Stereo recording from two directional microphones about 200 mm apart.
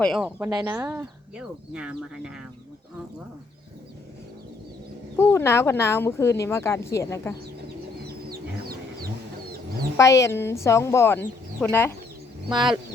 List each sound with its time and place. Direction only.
0.0 s speech: centre (ahead or behind)
0.3 s speech: 10° right (ahead or behind)
5.1 s speech: 10° left (ahead or behind)
8.0 s chicken: 50° right (ahead or behind)
10.0 s speech: 15° left (ahead or behind)